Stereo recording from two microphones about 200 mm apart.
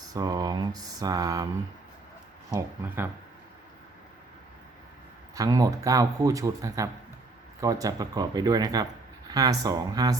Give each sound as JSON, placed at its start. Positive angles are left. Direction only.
{"t": 0.1, "sound": "speech", "side_deg": -20}
{"t": 2.5, "sound": "speech", "side_deg": -15}
{"t": 5.3, "sound": "speech", "side_deg": -15}